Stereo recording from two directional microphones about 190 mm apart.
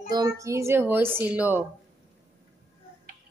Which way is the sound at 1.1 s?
10° right (ahead or behind).